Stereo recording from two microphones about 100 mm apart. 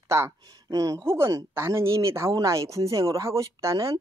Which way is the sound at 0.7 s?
35° right (ahead or behind).